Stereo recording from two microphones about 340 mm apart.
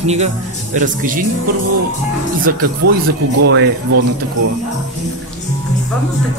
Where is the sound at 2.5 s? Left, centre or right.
Right.